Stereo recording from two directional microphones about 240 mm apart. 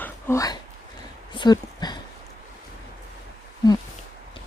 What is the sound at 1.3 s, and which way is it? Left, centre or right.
Speech, centre.